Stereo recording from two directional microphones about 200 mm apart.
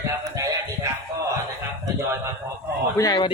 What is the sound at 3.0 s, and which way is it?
Speech, 20° left (ahead or behind).